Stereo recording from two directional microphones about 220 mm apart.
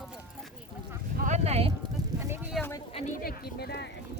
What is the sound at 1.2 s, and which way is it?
Speech, 30° right (ahead or behind).